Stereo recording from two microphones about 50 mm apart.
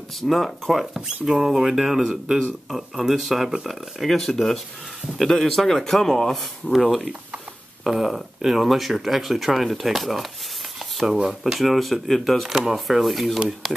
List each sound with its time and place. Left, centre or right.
0.3 s speech: centre
11.2 s speech: centre
12.4 s speech: centre
12.7 s speech: centre